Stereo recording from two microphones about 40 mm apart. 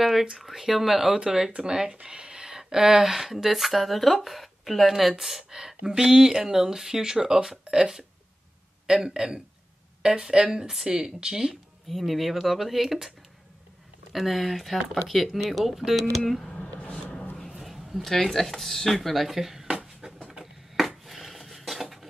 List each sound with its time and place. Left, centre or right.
0.0 s speech: centre
11.9 s speech: centre
14.1 s speech: centre
15.4 s speech: centre
16.9 s a sound: left
17.4 s speech: centre
20.7 s a sound: centre